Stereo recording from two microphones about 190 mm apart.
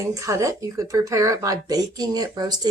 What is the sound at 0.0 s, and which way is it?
Speech, 15° right (ahead or behind).